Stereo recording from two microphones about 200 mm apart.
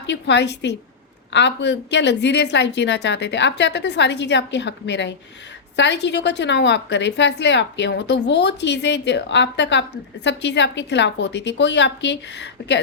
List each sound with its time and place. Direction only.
0.0 s a woman's voice: 60° left (ahead or behind)